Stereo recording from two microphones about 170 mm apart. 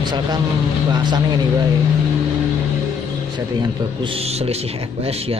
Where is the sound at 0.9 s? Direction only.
25° right (ahead or behind).